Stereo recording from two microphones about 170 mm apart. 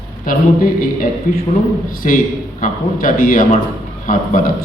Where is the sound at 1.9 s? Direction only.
55° left (ahead or behind).